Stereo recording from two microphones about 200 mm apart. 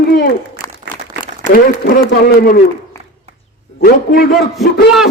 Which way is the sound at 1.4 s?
40° left (ahead or behind).